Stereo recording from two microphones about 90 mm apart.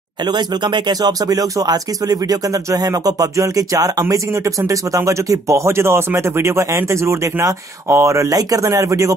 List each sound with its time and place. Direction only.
0.2 s speech: 55° right (ahead or behind); by 9.1 s 35° right (ahead or behind)